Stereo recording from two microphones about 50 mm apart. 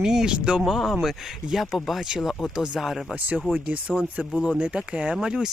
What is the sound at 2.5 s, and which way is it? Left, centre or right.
Speech, centre.